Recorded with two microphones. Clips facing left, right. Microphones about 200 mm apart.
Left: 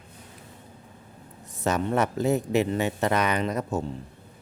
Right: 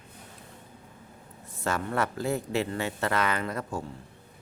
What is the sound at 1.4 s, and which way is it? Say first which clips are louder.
Speech: left 5 dB; 20° left (ahead or behind).